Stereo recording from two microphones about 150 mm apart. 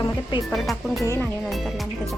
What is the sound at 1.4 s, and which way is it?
Speech, centre (ahead or behind).